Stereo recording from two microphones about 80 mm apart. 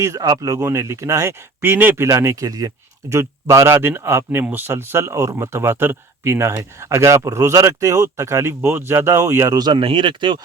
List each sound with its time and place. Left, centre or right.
0.0 s speech: right
1.7 s speech: right
4.7 s speech: right
9.6 s speech: right